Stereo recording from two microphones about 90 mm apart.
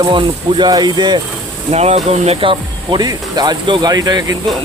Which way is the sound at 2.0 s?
85° right.